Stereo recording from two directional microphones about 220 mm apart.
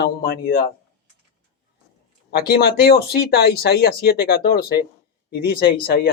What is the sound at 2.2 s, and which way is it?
Speech, 45° left (ahead or behind).